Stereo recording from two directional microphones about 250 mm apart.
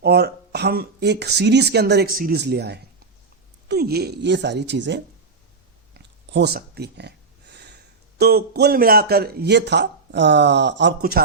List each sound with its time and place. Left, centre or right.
0.0 s a man's voice: right
5.9 s a sound: right
8.2 s a man's voice: right